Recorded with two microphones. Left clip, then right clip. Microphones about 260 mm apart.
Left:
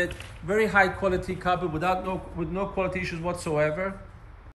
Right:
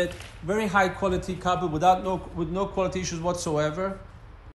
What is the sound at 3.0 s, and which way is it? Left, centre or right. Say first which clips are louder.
Speech: right 2 dB; right.